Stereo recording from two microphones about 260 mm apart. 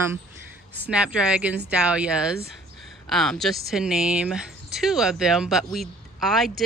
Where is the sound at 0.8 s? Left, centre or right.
Centre.